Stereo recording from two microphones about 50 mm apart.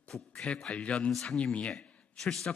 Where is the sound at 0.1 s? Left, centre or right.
Centre.